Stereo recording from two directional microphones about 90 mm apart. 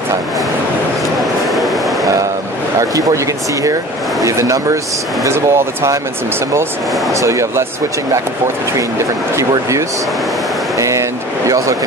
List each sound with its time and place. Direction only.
4.2 s speech: 35° right (ahead or behind)
7.2 s speech: 35° right (ahead or behind)
10.8 s vehicle: 35° right (ahead or behind)